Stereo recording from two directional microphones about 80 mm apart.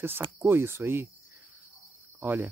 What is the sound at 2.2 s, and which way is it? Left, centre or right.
Cricket, right.